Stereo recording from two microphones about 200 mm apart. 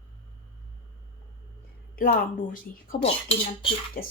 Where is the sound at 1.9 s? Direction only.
45° left (ahead or behind).